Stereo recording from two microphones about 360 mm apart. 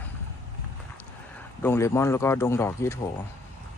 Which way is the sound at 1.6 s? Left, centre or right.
Centre.